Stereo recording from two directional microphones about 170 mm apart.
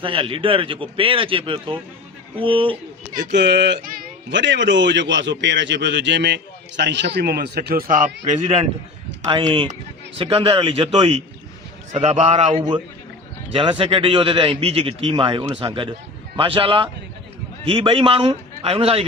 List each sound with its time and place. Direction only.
0.0 s a man's voice: 30° right (ahead or behind)
3.3 s a man's voice: 90° right; by 8.6 s 40° right (ahead or behind)
9.4 s a man's voice: 30° right (ahead or behind)
12.5 s a man's voice: 25° right (ahead or behind)